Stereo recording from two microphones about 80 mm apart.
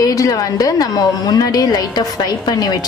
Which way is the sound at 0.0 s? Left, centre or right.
Left.